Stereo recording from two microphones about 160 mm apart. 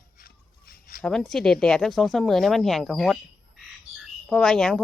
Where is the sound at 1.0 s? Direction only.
Centre (ahead or behind).